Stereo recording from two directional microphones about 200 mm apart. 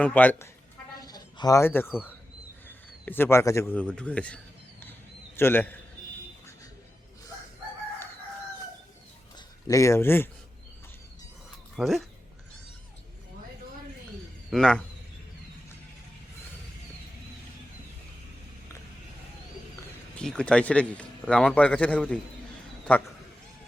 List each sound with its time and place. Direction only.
0.0 s speech: 10° left (ahead or behind)
1.0 s a sound: 20° left (ahead or behind)
2.6 s a man's voice: 10° left (ahead or behind)
5.4 s speech: 10° left (ahead or behind)
9.6 s speech: 15° left (ahead or behind)
11.8 s a man's voice: centre (ahead or behind)
14.5 s a man's voice: 5° left (ahead or behind)
20.1 s a man's voice: 5° left (ahead or behind)